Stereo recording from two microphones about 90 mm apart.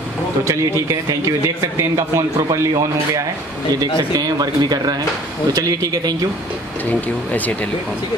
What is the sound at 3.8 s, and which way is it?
Speech, 45° right (ahead or behind).